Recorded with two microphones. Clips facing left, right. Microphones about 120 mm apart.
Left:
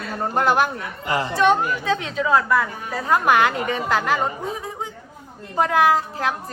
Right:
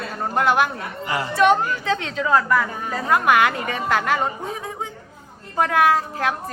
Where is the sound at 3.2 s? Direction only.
30° left (ahead or behind).